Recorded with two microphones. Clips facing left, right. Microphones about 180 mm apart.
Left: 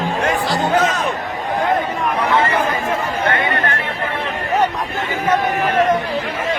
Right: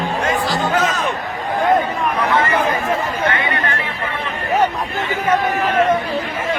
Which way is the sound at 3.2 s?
50° left (ahead or behind).